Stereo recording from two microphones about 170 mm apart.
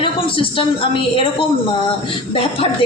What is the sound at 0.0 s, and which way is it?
Speech, 30° left (ahead or behind).